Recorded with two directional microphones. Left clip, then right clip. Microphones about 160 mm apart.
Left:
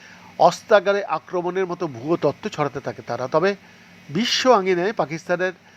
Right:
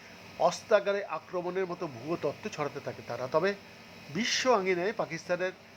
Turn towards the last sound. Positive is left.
turn(degrees=30)  # may be behind; listen again after turning